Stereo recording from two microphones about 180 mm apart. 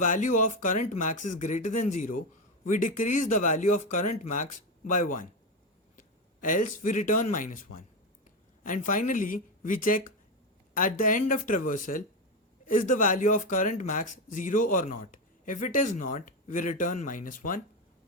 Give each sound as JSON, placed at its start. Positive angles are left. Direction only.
{"t": 0.0, "sound": "speech", "side_deg": 45}